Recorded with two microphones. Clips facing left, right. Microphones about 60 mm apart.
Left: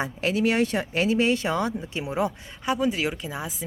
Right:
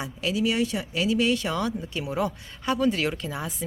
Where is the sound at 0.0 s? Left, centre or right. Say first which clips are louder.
Left 2 dB; left.